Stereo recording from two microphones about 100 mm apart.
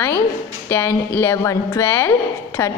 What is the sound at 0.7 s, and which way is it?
A woman's voice, 20° left (ahead or behind).